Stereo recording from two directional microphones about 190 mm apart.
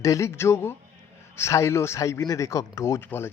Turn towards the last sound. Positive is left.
turn(degrees=10)  # may be behind; listen again after turning